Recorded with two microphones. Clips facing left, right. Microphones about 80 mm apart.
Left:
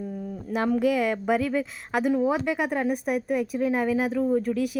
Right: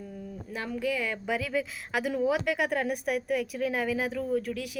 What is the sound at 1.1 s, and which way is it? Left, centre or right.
Speech, left.